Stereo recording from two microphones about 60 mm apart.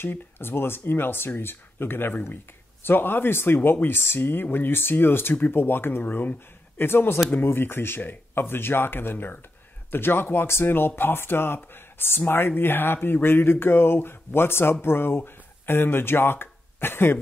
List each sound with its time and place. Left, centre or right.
0.0 s speech: left